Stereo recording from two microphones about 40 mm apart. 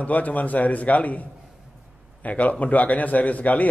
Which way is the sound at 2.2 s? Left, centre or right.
Left.